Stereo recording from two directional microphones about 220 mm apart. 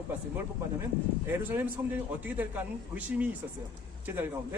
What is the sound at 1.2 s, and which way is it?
A man's voice, 10° right (ahead or behind).